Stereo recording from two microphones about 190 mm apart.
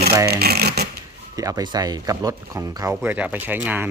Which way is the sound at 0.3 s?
55° right (ahead or behind).